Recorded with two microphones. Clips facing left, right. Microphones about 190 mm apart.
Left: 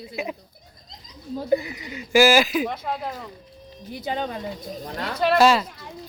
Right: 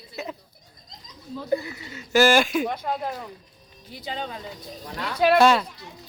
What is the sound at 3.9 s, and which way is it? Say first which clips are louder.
Speech: left 5 dB; 50° left (ahead or behind).